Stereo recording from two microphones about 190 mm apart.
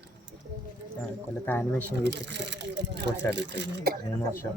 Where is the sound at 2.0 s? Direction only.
65° right (ahead or behind).